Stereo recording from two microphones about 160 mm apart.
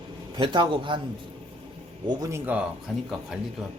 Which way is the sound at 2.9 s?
Centre (ahead or behind).